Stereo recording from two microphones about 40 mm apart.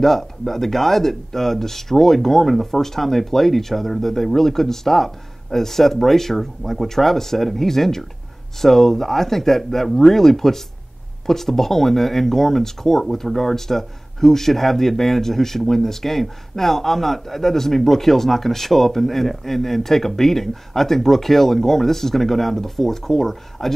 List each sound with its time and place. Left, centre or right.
0.0 s speech: centre